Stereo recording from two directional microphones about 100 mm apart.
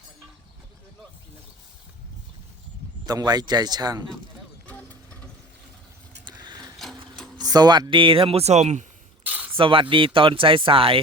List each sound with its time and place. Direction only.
3.1 s a man's voice: 40° right (ahead or behind)
4.6 s vehicle: 15° left (ahead or behind)
6.2 s a sound: 50° right (ahead or behind)
7.3 s speech: 45° right (ahead or behind); by 8.5 s 85° right
9.2 s a sound: 15° right (ahead or behind)
9.6 s speech: 60° right (ahead or behind)